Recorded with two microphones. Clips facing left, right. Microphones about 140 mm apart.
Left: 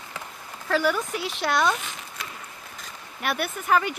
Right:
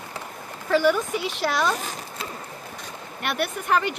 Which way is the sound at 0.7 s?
Centre (ahead or behind).